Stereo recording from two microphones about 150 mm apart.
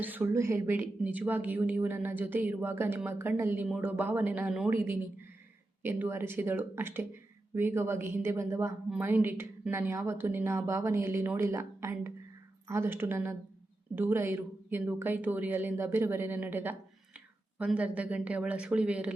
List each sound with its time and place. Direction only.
0.0 s a woman's voice: 10° right (ahead or behind)